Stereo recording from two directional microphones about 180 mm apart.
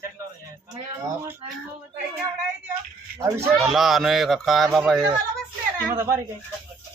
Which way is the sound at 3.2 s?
15° right (ahead or behind).